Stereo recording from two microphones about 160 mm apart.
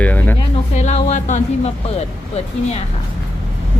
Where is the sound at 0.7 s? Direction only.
45° left (ahead or behind).